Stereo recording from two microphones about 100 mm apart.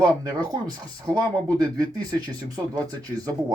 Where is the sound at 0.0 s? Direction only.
40° right (ahead or behind).